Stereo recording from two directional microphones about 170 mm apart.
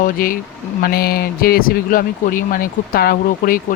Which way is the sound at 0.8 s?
65° left (ahead or behind).